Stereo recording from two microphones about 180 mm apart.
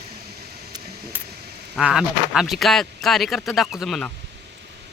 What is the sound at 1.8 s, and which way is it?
Speech, 5° right (ahead or behind).